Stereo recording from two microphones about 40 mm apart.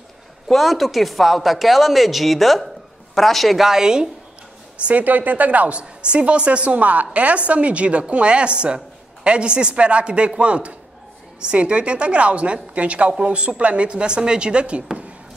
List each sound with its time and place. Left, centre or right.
0.5 s speech: centre
3.6 s a woman's voice: centre
4.7 s a woman's voice: right
5.0 s speech: right
6.1 s a woman's voice: right